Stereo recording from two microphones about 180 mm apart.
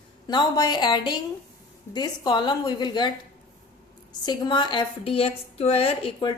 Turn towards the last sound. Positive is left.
turn(degrees=30)  # may be behind; listen again after turning